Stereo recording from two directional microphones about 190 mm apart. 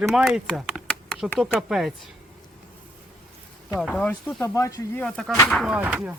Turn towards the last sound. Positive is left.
turn(degrees=-5)  # may be behind; listen again after turning